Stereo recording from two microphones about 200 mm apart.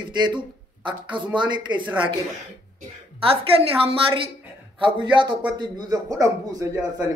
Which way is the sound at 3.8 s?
25° right (ahead or behind).